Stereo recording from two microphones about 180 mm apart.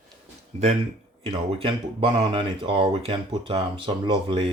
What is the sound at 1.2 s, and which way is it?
Speech, 30° right (ahead or behind).